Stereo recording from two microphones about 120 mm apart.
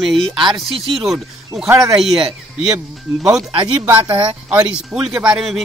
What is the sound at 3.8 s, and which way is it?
Speech, 20° right (ahead or behind).